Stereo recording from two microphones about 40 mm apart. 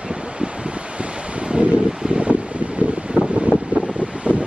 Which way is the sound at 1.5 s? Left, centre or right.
Right.